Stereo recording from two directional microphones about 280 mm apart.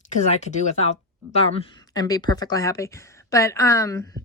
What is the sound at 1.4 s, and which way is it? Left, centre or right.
Speech, centre.